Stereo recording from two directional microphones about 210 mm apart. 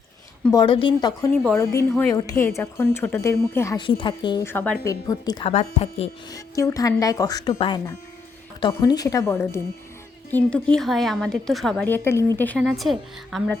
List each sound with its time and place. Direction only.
0.5 s a woman's voice: 25° left (ahead or behind)
5.5 s speech: 30° left (ahead or behind)
6.3 s a woman's voice: 15° left (ahead or behind); by 13.6 s centre (ahead or behind)